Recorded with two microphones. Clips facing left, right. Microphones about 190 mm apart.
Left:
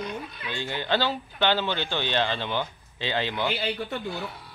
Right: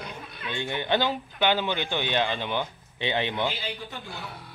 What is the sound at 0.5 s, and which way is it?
Speech, 20° right (ahead or behind).